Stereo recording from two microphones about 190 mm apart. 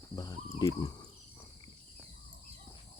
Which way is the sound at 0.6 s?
20° left (ahead or behind).